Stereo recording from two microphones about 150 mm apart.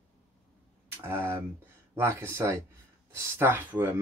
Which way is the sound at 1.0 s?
15° right (ahead or behind).